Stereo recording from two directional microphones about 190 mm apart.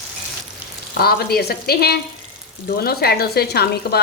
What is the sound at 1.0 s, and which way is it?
Frying, 55° left (ahead or behind).